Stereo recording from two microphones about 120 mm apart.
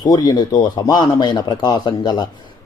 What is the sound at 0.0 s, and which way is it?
Speech, 35° left (ahead or behind).